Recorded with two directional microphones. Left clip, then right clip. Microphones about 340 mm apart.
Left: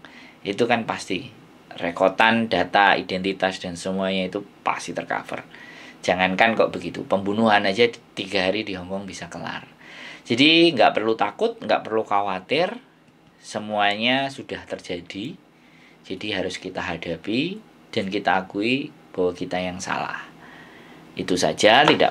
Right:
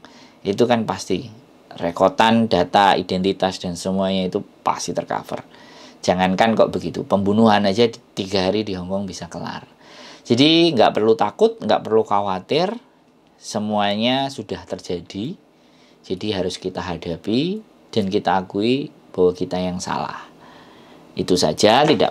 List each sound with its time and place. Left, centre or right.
0.4 s speech: right